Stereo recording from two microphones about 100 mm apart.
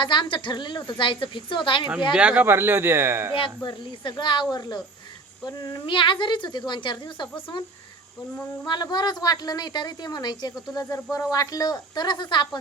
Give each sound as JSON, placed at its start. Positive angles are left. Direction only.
{"t": 0.0, "sound": "a woman's voice", "side_deg": 50}
{"t": 2.1, "sound": "speech", "side_deg": -15}
{"t": 3.6, "sound": "a woman's voice", "side_deg": 50}
{"t": 5.5, "sound": "a woman's voice", "side_deg": 40}
{"t": 8.6, "sound": "a woman's voice", "side_deg": 45}
{"t": 10.9, "sound": "speech", "side_deg": 30}